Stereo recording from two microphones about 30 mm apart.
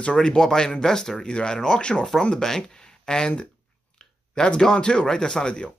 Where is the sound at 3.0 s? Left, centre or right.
Left.